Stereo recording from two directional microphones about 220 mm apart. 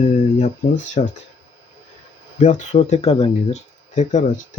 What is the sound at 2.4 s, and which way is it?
Speech, 35° left (ahead or behind).